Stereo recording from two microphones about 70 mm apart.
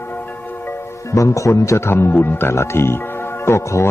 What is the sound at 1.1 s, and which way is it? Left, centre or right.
Speech, left.